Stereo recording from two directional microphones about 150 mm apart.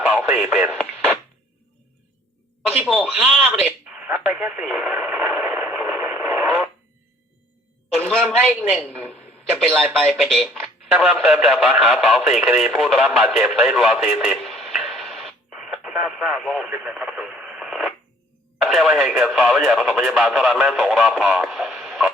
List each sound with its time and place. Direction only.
0.0 s radio: 10° right (ahead or behind)
2.6 s a sound: 15° right (ahead or behind)
2.9 s speech: centre (ahead or behind)
3.2 s radio: 10° right (ahead or behind)
9.1 s radio: 10° left (ahead or behind)
9.6 s speech: 15° right (ahead or behind)
10.1 s speech: centre (ahead or behind)